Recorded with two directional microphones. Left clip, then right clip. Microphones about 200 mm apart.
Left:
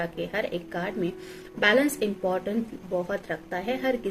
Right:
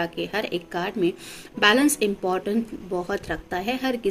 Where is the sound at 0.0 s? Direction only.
50° right (ahead or behind).